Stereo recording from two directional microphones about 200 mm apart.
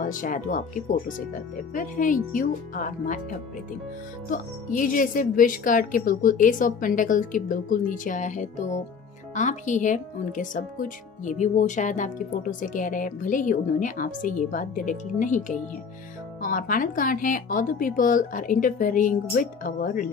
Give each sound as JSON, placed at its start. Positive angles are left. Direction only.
{"t": 0.0, "sound": "speech", "side_deg": 40}